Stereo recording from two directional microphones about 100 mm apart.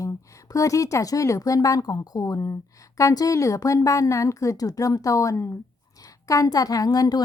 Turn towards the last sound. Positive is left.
turn(degrees=40)  # may be behind; listen again after turning